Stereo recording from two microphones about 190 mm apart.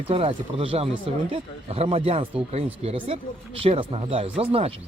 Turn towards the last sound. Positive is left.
turn(degrees=-30)  # may be behind; listen again after turning